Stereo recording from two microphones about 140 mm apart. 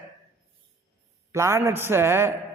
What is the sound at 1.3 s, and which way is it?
A man's voice, 20° right (ahead or behind).